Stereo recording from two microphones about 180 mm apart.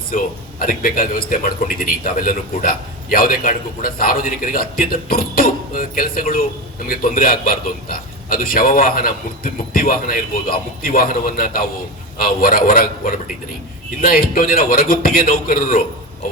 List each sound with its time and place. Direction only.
0.6 s a man's voice: 50° left (ahead or behind)